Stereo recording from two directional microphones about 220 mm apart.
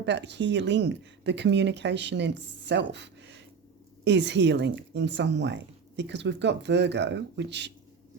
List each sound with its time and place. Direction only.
0.0 s speech: 50° right (ahead or behind)